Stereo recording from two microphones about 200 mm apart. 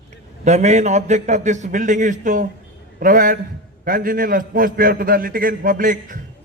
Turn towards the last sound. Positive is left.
turn(degrees=-40)  # may be behind; listen again after turning